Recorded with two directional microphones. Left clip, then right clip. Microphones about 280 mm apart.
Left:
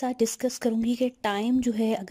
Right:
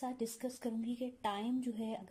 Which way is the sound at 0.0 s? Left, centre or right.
Left.